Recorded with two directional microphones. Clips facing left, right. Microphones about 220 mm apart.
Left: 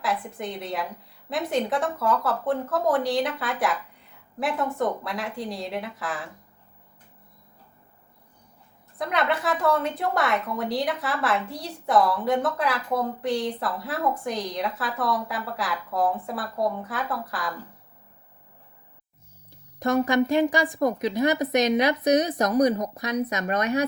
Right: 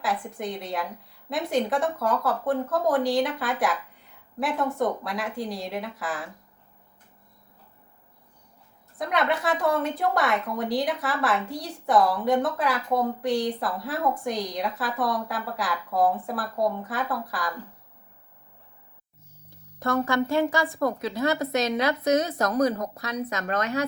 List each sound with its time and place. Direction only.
0.0 s a woman's voice: centre (ahead or behind)
9.0 s a woman's voice: centre (ahead or behind)
19.5 s speech: 15° left (ahead or behind)